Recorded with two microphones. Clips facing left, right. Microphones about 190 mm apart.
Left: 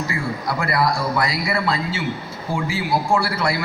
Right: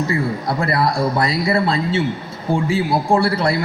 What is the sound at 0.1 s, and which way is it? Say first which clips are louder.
A man's voice: right 4 dB; 30° right (ahead or behind).